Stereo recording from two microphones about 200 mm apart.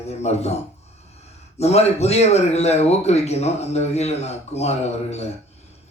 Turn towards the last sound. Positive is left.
turn(degrees=35)  # may be behind; listen again after turning